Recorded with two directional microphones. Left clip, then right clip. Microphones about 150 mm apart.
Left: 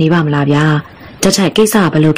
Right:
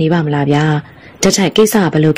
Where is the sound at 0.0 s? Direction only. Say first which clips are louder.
Left 2 dB; 15° right (ahead or behind).